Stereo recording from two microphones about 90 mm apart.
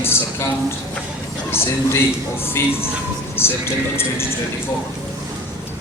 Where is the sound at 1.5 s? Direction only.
25° left (ahead or behind).